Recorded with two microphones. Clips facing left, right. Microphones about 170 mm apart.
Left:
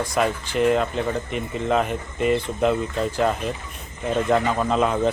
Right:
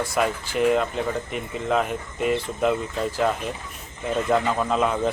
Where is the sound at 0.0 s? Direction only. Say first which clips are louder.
Left 1 dB; 5° right (ahead or behind).